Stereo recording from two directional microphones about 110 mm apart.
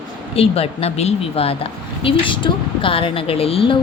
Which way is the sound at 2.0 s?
50° left (ahead or behind).